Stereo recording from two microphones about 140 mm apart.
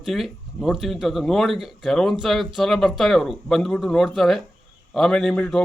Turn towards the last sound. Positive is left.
turn(degrees=5)  # may be behind; listen again after turning